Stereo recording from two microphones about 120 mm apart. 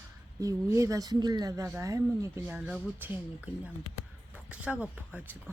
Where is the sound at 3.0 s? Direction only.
10° right (ahead or behind).